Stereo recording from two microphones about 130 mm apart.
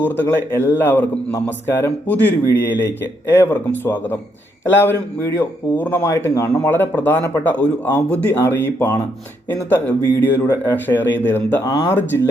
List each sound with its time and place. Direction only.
0.0 s a man's voice: 15° left (ahead or behind)
11.6 s speech: 35° left (ahead or behind)
11.9 s speech: 20° left (ahead or behind)